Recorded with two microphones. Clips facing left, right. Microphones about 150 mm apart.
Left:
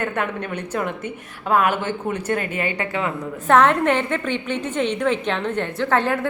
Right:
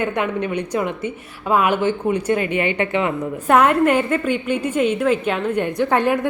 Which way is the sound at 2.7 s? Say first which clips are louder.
Right 5 dB; 20° right (ahead or behind).